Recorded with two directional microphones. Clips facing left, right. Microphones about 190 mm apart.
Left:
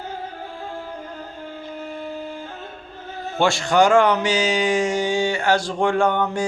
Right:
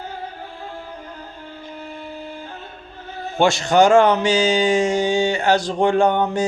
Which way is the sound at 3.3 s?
20° right (ahead or behind).